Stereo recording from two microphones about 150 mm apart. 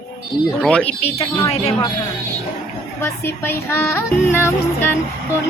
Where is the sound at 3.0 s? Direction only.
15° left (ahead or behind).